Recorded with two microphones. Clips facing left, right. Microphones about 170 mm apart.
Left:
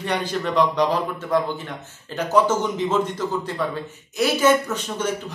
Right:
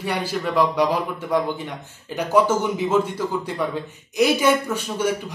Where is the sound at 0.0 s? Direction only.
5° right (ahead or behind).